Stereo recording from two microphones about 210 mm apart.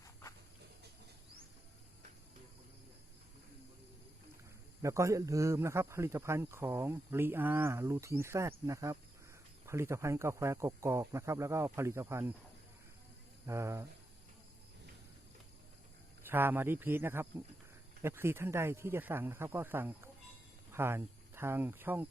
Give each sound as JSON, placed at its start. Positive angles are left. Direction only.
{"t": 0.0, "sound": "walk", "side_deg": 15}
{"t": 4.8, "sound": "speech", "side_deg": -15}
{"t": 13.4, "sound": "speech", "side_deg": -15}
{"t": 16.2, "sound": "speech", "side_deg": -10}